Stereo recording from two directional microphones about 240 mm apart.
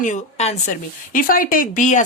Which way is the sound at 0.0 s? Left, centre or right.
Left.